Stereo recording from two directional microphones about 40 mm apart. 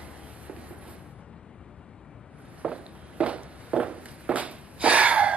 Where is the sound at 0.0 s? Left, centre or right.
Right.